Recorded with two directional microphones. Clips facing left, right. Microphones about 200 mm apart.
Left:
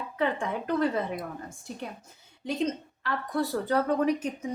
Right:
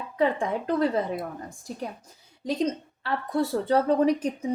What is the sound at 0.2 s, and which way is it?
A woman's voice, 35° right (ahead or behind).